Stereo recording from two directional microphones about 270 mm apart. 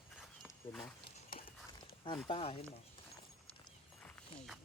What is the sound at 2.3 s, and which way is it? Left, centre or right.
Speech, left.